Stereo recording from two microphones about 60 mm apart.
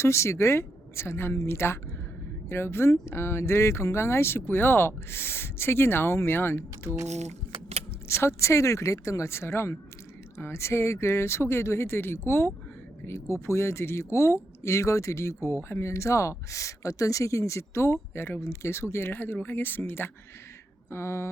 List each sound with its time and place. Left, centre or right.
0.0 s speech: left
8.0 s speech: left
20.9 s speech: left